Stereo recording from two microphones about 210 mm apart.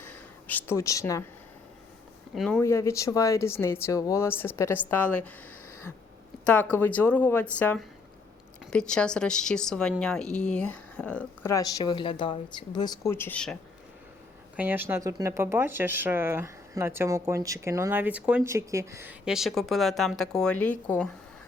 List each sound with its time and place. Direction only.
0.0 s a sound: 10° left (ahead or behind)
2.3 s speech: centre (ahead or behind)
2.6 s speech: 15° left (ahead or behind)
6.4 s speech: 5° left (ahead or behind)
10.2 s speech: 35° left (ahead or behind)
10.5 s speech: 5° left (ahead or behind)
14.5 s speech: 10° right (ahead or behind); by 21.1 s 5° left (ahead or behind)